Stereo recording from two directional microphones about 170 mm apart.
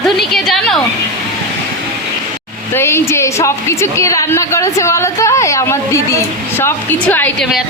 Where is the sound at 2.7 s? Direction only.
15° left (ahead or behind).